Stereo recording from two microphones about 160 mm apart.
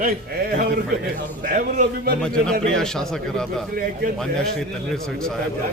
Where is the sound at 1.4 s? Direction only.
60° right (ahead or behind).